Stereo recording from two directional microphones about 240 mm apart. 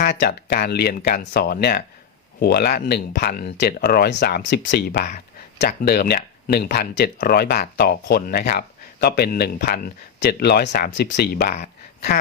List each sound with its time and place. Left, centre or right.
0.0 s speech: left